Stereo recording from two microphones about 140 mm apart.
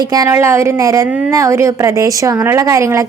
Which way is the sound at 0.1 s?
20° right (ahead or behind).